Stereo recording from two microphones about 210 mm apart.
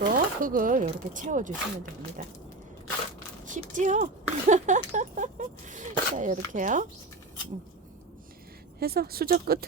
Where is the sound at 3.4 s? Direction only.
35° right (ahead or behind).